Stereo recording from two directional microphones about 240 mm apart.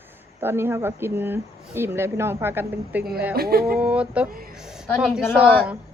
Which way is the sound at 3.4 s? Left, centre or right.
Right.